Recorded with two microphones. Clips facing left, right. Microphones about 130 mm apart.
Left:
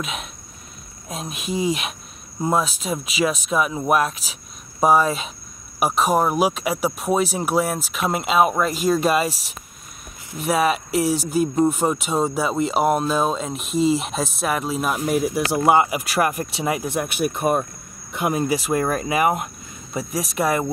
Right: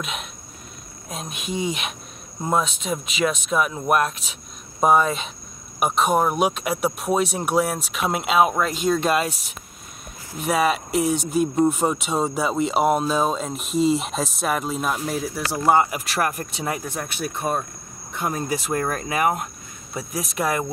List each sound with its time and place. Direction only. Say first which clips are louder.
0.0 s speech: left 2 dB; centre (ahead or behind)